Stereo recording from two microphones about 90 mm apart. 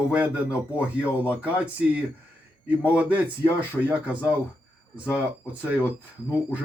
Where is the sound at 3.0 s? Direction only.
15° right (ahead or behind).